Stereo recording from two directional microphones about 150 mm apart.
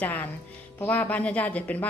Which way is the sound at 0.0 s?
10° left (ahead or behind).